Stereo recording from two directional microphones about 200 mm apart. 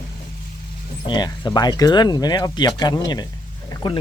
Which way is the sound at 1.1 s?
20° left (ahead or behind).